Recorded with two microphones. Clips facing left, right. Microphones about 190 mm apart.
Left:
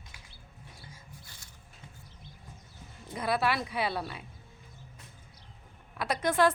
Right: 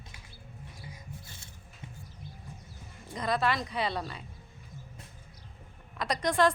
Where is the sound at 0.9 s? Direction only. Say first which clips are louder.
Right 5 dB; 25° right (ahead or behind).